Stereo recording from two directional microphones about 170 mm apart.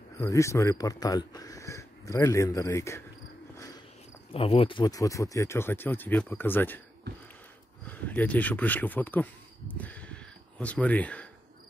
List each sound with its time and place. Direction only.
0.2 s speech: 15° left (ahead or behind)
3.5 s cricket: 20° left (ahead or behind)
4.3 s speech: 35° left (ahead or behind); by 6.8 s 10° left (ahead or behind)
7.8 s speech: 10° left (ahead or behind)